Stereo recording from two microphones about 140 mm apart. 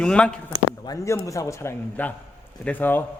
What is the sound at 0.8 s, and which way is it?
A man's voice, 20° left (ahead or behind).